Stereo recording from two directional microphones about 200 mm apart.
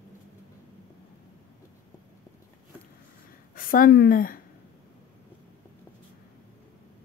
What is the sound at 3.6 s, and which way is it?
Speech, 45° left (ahead or behind).